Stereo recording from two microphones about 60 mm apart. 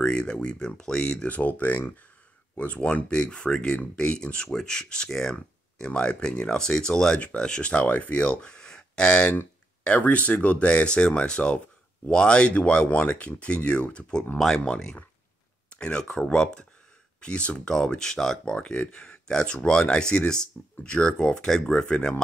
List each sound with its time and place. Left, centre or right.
0.0 s speech: centre
14.6 s speech: centre